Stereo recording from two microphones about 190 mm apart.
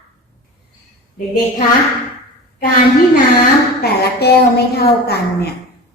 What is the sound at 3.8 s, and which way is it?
Child singing, 55° left (ahead or behind).